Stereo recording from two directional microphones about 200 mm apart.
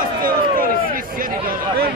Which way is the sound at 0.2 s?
45° right (ahead or behind).